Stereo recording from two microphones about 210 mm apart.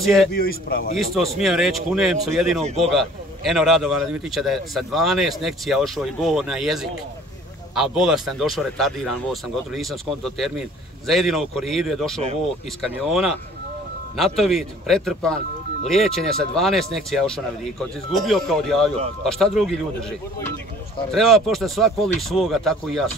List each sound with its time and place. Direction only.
0.0 s a man's voice: centre (ahead or behind)
0.3 s speech: 45° left (ahead or behind)
0.9 s a man's voice: centre (ahead or behind)